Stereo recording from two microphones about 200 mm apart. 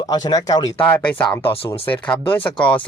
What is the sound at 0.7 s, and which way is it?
Speech, 10° left (ahead or behind).